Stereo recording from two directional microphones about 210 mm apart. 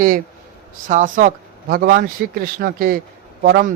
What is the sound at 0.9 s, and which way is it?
A man's voice, 35° right (ahead or behind).